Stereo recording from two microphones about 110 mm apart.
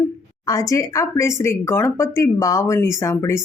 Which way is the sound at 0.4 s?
30° left (ahead or behind).